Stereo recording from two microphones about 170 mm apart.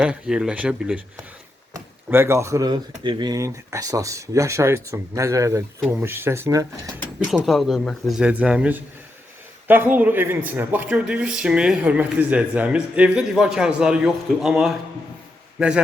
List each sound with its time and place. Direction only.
0.0 s a man's voice: 5° right (ahead or behind)
7.3 s a man's voice: centre (ahead or behind)